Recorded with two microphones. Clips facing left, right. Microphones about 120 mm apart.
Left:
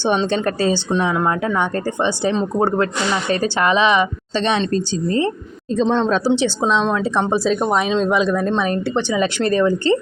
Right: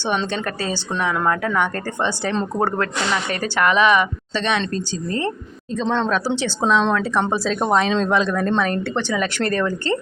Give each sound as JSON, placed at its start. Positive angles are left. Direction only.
{"t": 0.3, "sound": "a woman's voice", "side_deg": 30}
{"t": 1.1, "sound": "a woman's voice", "side_deg": 15}